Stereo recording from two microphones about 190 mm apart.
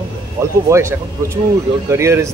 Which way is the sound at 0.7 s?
15° right (ahead or behind).